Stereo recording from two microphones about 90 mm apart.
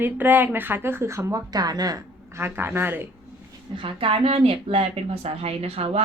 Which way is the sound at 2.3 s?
25° right (ahead or behind).